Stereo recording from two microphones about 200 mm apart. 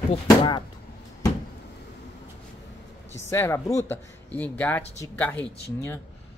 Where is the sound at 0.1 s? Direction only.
25° left (ahead or behind).